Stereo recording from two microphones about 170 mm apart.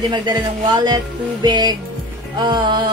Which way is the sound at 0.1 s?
25° right (ahead or behind).